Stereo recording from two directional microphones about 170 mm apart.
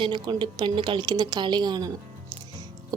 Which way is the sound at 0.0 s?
25° right (ahead or behind).